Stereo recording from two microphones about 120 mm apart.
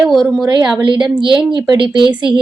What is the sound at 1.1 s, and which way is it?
Speech, 40° right (ahead or behind).